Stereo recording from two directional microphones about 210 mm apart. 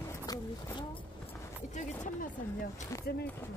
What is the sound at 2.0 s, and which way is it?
Speech, 40° left (ahead or behind).